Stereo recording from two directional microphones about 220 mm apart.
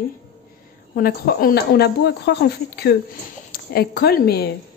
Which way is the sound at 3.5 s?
45° left (ahead or behind).